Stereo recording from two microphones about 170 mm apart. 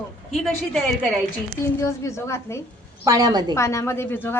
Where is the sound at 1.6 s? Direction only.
15° left (ahead or behind).